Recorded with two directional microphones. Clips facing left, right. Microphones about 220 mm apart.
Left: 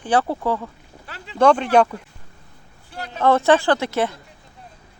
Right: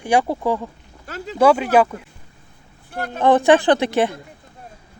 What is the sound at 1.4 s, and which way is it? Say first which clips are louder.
Speech: right 1 dB; 5° right (ahead or behind).